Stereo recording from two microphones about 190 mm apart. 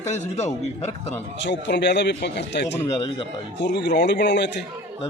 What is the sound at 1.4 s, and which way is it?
Speech, 65° left (ahead or behind).